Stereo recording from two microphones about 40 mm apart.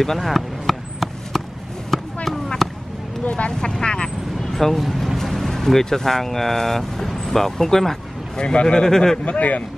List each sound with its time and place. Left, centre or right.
0.0 s chop: centre
1.9 s a sound: centre
2.2 s basketball bounce: centre
3.3 s speech: left
3.5 s speech: centre
4.4 s speech: centre
8.4 s a man's voice: left
9.2 s speech: left